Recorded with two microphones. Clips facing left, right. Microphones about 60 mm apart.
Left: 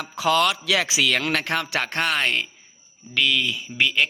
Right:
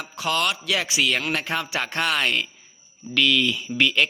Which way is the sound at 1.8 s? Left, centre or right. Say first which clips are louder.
Even; left.